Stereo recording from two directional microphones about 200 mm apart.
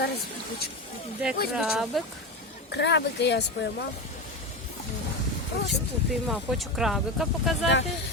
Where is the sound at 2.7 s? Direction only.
60° left (ahead or behind).